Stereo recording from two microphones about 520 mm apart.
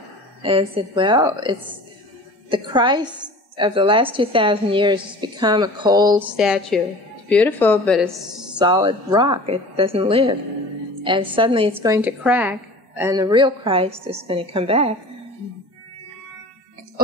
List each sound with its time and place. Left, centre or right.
0.4 s a woman's voice: centre
8.5 s a woman's voice: centre